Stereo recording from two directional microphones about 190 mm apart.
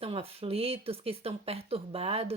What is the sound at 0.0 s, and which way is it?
Speech, 30° right (ahead or behind).